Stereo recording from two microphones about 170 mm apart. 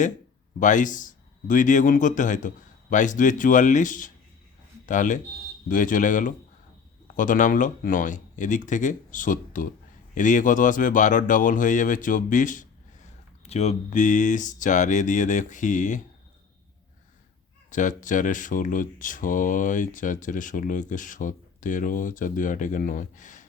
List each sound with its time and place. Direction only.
0.6 s speech: 50° left (ahead or behind)
13.4 s speech: 40° left (ahead or behind)
17.7 s speech: 50° left (ahead or behind)